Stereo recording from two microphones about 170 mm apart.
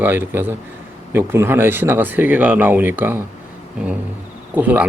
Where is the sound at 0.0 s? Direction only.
10° right (ahead or behind).